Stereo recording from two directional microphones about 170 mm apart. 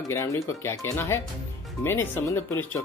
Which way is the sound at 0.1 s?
15° left (ahead or behind).